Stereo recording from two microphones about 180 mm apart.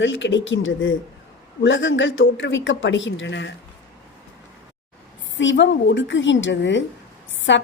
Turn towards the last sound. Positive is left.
turn(degrees=90)